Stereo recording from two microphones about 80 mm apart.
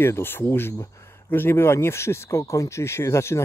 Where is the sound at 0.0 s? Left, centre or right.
Left.